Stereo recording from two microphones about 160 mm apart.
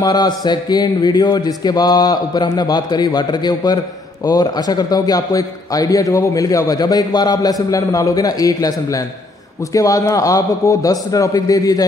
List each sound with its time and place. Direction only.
0.0 s a man's voice: 25° left (ahead or behind)